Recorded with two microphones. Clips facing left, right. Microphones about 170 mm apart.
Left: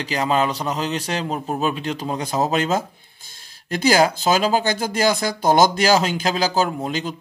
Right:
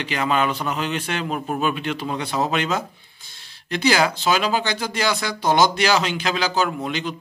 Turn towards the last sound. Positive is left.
turn(degrees=40)  # may be behind; listen again after turning